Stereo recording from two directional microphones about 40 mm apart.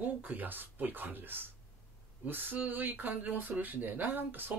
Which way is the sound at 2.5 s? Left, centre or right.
Right.